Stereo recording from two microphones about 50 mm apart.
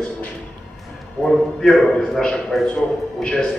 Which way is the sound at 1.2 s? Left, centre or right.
Centre.